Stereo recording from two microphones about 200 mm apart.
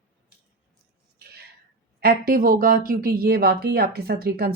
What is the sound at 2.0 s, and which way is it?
Speech, 45° right (ahead or behind).